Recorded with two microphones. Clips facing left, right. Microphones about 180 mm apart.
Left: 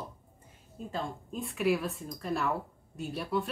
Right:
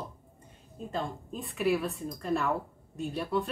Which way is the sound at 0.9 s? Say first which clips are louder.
Right 2 dB; centre (ahead or behind).